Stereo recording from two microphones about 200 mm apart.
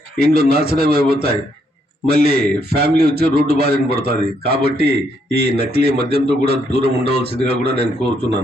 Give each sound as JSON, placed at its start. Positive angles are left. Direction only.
{"t": 0.3, "sound": "a man's voice", "side_deg": -50}